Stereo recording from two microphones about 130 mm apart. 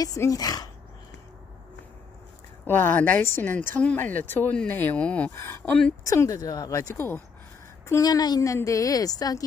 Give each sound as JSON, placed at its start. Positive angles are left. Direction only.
{"t": 0.0, "sound": "a woman's voice", "side_deg": 25}
{"t": 2.6, "sound": "a woman's voice", "side_deg": 15}